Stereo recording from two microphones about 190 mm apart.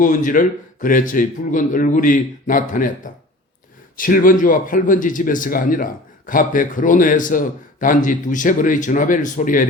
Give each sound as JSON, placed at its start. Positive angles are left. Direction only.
{"t": 0.0, "sound": "a man's voice", "side_deg": 45}